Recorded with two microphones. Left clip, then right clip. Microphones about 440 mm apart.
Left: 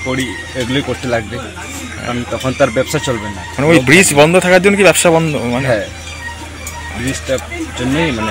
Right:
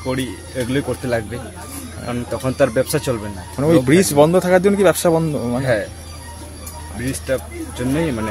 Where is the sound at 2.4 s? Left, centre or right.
Right.